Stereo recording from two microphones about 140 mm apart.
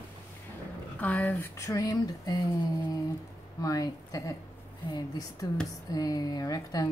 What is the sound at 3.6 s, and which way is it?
Speech, 25° left (ahead or behind).